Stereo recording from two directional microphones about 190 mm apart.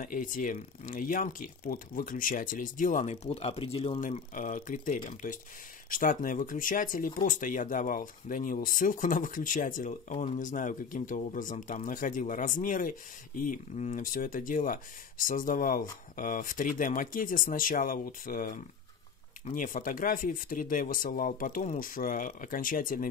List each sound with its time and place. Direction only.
0.0 s speech: 45° left (ahead or behind)